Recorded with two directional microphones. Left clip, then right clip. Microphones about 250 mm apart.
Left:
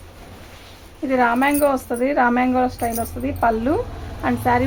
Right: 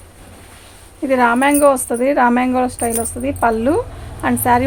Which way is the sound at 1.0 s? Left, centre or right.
Right.